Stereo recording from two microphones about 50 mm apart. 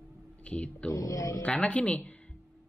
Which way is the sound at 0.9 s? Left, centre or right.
Left.